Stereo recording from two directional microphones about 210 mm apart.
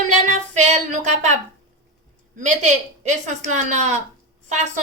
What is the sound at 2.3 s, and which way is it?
A woman's voice, 35° right (ahead or behind).